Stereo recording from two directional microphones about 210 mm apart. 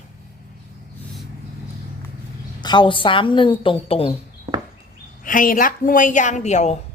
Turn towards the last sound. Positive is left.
turn(degrees=35)  # may be behind; listen again after turning